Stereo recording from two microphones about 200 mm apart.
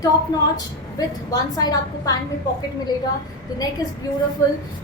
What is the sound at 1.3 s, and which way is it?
Speech, 20° left (ahead or behind).